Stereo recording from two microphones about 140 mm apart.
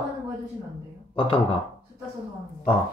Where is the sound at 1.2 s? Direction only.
40° left (ahead or behind).